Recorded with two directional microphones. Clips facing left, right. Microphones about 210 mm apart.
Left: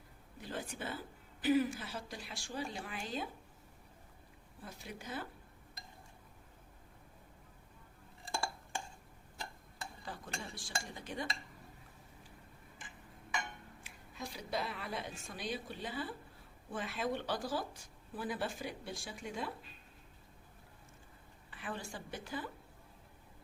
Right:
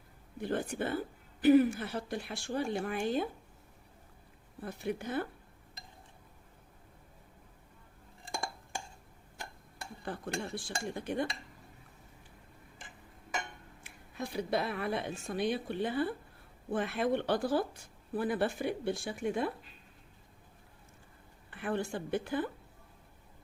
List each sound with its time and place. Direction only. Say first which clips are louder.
0.4 s speech: right 9 dB; 55° right (ahead or behind)
4.6 s speech: right 11 dB; 60° right (ahead or behind)
10.0 s speech: right 9 dB; 60° right (ahead or behind)
14.2 s speech: right 7 dB; 60° right (ahead or behind)
21.5 s speech: right 10 dB; 60° right (ahead or behind)